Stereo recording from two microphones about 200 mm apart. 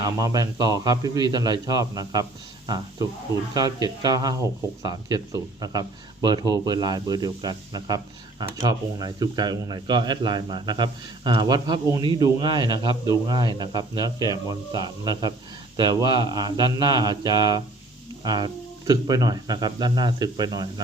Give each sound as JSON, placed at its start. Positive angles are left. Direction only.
{"t": 0.0, "sound": "speech", "side_deg": -20}